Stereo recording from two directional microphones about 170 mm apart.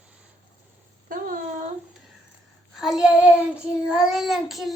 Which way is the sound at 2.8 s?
5° right (ahead or behind).